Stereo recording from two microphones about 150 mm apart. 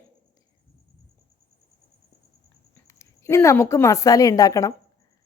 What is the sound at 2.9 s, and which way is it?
A woman's voice, 20° left (ahead or behind).